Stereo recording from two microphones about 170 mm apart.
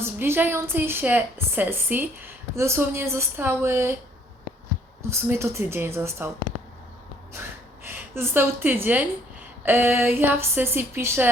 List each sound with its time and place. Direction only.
0.0 s a woman's voice: 15° right (ahead or behind)
5.3 s a woman's voice: 15° right (ahead or behind)
7.9 s a woman's voice: 15° right (ahead or behind)